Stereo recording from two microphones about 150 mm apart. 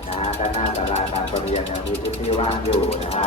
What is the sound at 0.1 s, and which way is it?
Jackhammer, 40° left (ahead or behind).